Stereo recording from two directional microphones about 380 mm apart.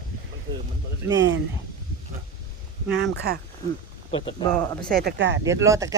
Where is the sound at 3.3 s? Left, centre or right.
Right.